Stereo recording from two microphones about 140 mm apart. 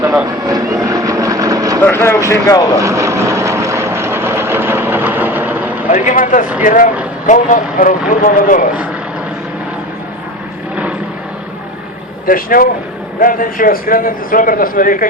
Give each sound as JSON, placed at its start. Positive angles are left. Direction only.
{"t": 0.4, "sound": "vehicle", "side_deg": -25}
{"t": 1.8, "sound": "speech", "side_deg": 15}
{"t": 2.7, "sound": "vehicle", "side_deg": -20}
{"t": 5.9, "sound": "speech", "side_deg": 65}
{"t": 12.2, "sound": "speech", "side_deg": 90}
{"t": 13.1, "sound": "speech", "side_deg": 80}